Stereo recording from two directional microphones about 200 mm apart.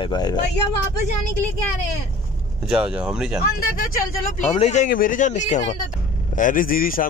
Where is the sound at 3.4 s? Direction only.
45° left (ahead or behind).